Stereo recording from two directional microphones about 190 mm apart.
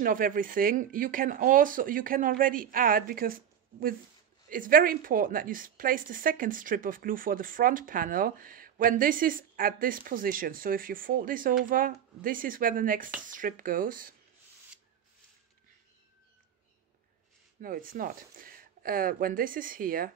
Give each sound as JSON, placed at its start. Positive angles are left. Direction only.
{"t": 0.0, "sound": "a woman's voice", "side_deg": -45}
{"t": 17.6, "sound": "a woman's voice", "side_deg": -50}